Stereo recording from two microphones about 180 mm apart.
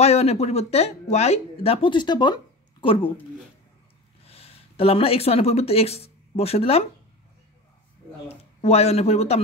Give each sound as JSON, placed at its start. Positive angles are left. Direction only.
{"t": 0.0, "sound": "speech", "side_deg": 35}
{"t": 4.3, "sound": "speech", "side_deg": 35}
{"t": 8.3, "sound": "speech", "side_deg": 35}